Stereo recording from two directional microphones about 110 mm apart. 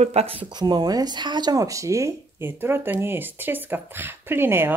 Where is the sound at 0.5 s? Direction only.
40° right (ahead or behind); by 4.7 s 20° right (ahead or behind).